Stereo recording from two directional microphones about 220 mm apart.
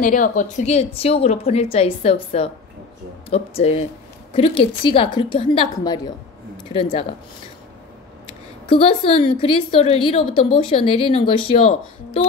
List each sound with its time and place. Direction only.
0.0 s a woman's voice: 35° left (ahead or behind)
8.6 s a woman's voice: 25° left (ahead or behind)